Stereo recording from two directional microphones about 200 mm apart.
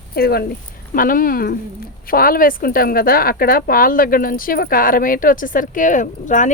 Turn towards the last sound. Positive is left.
turn(degrees=40)  # may be behind; listen again after turning